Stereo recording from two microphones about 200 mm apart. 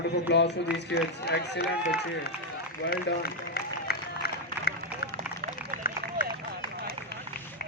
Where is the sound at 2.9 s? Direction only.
50° left (ahead or behind).